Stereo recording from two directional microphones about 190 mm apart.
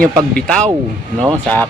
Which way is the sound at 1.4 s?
10° left (ahead or behind).